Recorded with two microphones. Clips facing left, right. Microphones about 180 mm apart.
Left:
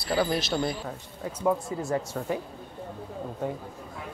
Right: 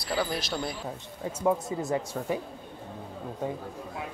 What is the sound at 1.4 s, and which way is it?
Speech, 15° right (ahead or behind).